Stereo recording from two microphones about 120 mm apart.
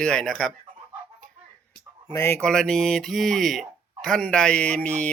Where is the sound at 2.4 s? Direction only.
5° left (ahead or behind).